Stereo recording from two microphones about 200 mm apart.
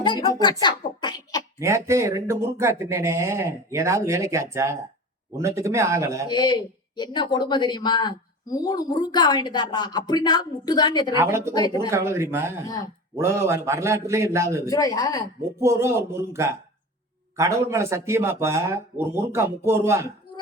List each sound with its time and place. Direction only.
0.0 s speech: 20° left (ahead or behind)
0.6 s a sound: 20° left (ahead or behind)
1.5 s speech: 15° right (ahead or behind)
6.2 s speech: 20° left (ahead or behind)
11.1 s speech: 15° right (ahead or behind)
11.5 s speech: 20° left (ahead or behind)
11.9 s speech: 15° right (ahead or behind)
14.7 s speech: 15° left (ahead or behind)
15.6 s speech: 15° right (ahead or behind)